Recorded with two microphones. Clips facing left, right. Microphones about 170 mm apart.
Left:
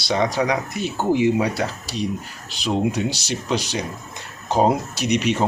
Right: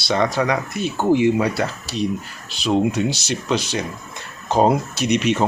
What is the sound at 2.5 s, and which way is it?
Speech, 15° left (ahead or behind).